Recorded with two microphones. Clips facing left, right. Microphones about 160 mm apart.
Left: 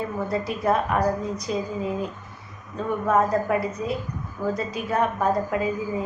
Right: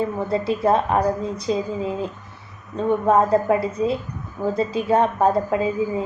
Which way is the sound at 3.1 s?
25° right (ahead or behind).